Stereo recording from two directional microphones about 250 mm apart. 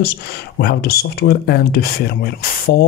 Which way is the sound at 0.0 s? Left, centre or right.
Left.